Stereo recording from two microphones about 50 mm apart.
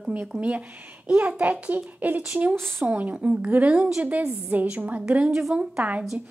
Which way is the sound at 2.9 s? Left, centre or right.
Right.